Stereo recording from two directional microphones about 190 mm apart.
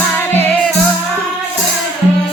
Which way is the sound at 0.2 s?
10° left (ahead or behind).